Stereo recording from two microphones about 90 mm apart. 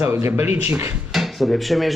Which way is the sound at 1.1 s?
Centre (ahead or behind).